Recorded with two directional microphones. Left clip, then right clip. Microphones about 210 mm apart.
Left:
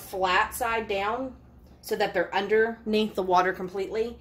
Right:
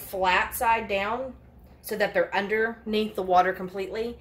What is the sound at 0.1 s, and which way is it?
A woman's voice, 40° left (ahead or behind).